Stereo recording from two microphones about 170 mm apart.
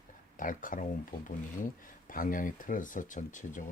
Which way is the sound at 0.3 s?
50° left (ahead or behind).